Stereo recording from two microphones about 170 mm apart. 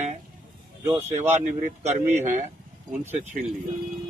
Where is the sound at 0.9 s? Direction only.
15° right (ahead or behind).